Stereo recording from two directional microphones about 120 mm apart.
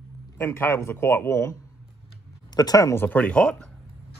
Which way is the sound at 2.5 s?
30° left (ahead or behind).